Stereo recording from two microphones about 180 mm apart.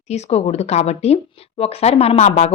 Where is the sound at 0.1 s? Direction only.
35° left (ahead or behind).